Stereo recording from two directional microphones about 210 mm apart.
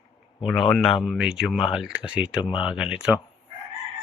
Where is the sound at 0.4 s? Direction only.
Centre (ahead or behind).